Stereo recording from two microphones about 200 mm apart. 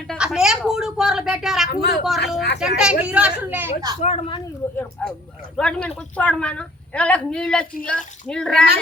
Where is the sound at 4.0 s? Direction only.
30° left (ahead or behind).